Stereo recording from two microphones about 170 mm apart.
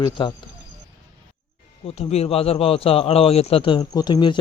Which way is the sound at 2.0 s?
35° left (ahead or behind).